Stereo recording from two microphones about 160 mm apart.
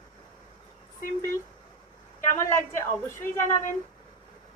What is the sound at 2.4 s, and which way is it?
Speech, 15° left (ahead or behind).